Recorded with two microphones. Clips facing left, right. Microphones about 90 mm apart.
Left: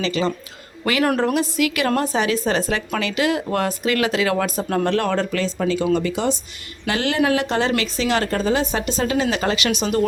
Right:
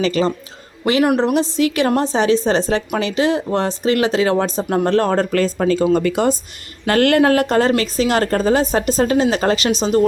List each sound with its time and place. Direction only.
0.0 s speech: 40° right (ahead or behind)
1.0 s speech: 20° right (ahead or behind)
1.5 s a woman's voice: 30° right (ahead or behind)